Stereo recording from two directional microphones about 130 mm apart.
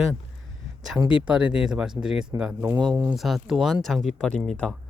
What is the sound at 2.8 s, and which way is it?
Speech, 35° right (ahead or behind).